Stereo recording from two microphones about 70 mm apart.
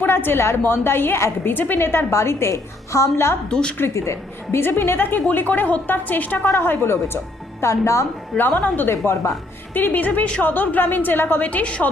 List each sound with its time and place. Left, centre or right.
0.0 s a woman's voice: left
3.5 s a woman's voice: centre
3.8 s a woman's voice: left
6.5 s a woman's voice: left
7.6 s a woman's voice: left
8.4 s a woman's voice: left
8.9 s a woman's voice: left
9.7 s a woman's voice: left